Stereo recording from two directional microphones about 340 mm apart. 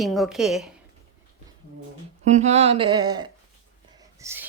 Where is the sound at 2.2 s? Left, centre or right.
Centre.